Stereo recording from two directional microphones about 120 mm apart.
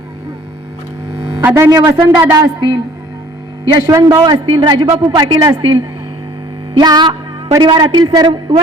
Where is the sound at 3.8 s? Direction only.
30° right (ahead or behind).